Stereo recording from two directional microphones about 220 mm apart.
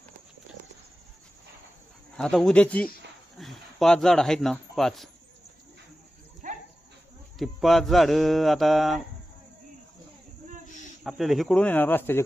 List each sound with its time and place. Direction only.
2.1 s speech: 5° left (ahead or behind)
6.4 s dog: 35° right (ahead or behind)
7.3 s speech: centre (ahead or behind)
11.0 s speech: centre (ahead or behind)